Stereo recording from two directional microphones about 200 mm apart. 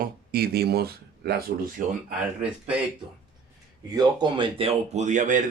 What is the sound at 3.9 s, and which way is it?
Speech, 20° right (ahead or behind).